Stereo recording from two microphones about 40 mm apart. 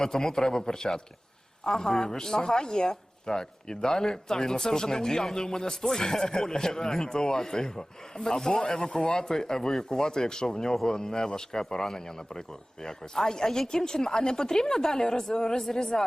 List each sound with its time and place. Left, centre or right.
0.0 s speech: centre